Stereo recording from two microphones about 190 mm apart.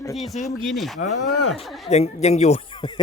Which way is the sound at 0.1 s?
Centre (ahead or behind).